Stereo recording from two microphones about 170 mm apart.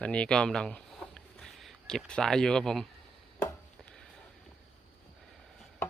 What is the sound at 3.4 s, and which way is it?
Chopping, 10° left (ahead or behind).